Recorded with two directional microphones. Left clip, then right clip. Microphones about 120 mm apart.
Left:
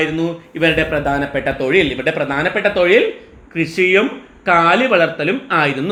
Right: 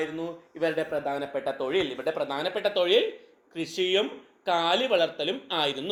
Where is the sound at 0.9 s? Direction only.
30° right (ahead or behind).